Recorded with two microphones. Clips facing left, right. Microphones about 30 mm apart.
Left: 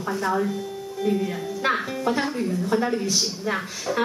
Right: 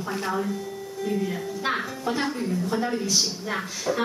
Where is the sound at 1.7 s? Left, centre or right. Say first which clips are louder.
Left 4 dB; centre.